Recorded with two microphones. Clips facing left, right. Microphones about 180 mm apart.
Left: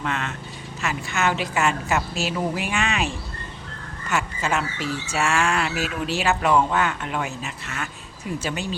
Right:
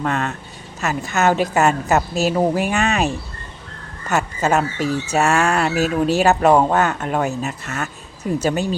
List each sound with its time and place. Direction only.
0.0 s speech: 45° right (ahead or behind)
4.1 s speech: 40° right (ahead or behind)